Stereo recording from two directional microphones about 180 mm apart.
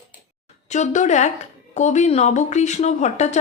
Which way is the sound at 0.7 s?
40° left (ahead or behind).